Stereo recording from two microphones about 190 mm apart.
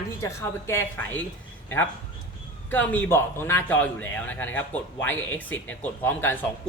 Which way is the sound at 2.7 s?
10° left (ahead or behind).